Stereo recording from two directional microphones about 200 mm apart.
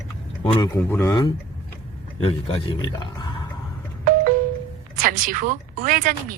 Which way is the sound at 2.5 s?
25° left (ahead or behind).